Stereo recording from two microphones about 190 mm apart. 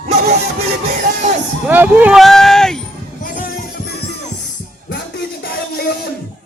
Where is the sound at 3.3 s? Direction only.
50° left (ahead or behind).